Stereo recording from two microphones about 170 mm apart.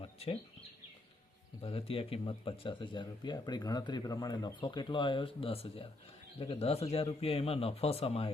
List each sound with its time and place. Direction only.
0.0 s bird: 35° left (ahead or behind)
1.6 s speech: 35° left (ahead or behind)